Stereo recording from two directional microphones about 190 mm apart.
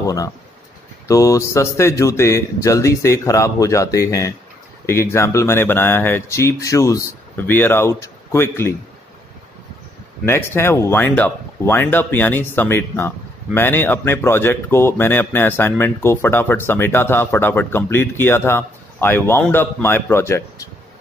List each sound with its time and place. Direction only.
0.0 s speech: 20° left (ahead or behind)
10.2 s speech: 15° left (ahead or behind)